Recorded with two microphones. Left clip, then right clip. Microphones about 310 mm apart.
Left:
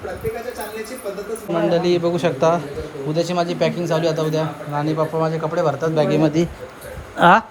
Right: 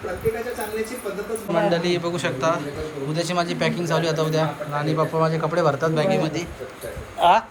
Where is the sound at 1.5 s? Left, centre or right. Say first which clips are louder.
Left 3 dB; centre; by 7.4 s left.